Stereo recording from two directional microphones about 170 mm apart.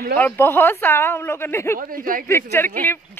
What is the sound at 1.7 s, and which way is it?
Speech, 55° right (ahead or behind).